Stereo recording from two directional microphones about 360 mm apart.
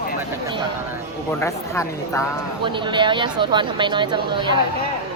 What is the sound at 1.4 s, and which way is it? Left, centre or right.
Speech, centre.